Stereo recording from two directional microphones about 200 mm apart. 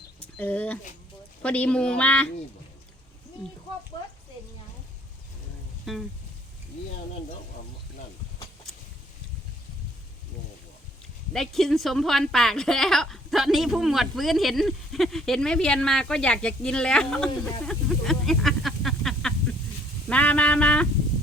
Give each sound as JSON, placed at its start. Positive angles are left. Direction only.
{"t": 0.3, "sound": "speech", "side_deg": 10}
{"t": 5.8, "sound": "a sound", "side_deg": 0}
{"t": 11.3, "sound": "a woman's voice", "side_deg": 0}